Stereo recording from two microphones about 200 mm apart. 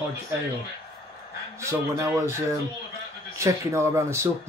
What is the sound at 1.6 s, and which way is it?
Speech, 15° right (ahead or behind).